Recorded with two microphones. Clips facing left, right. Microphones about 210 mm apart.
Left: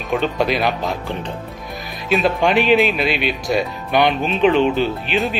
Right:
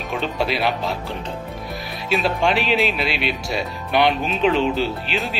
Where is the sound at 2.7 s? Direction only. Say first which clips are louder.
Left 5 dB; centre (ahead or behind).